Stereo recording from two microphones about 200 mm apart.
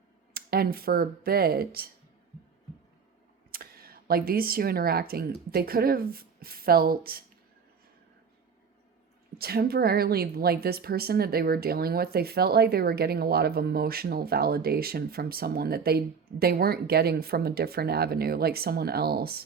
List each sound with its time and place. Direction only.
0.3 s speech: 50° right (ahead or behind)
3.5 s a woman's voice: 50° right (ahead or behind)
9.4 s a woman's voice: 50° right (ahead or behind)